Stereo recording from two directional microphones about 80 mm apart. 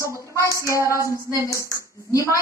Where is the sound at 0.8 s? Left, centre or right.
Right.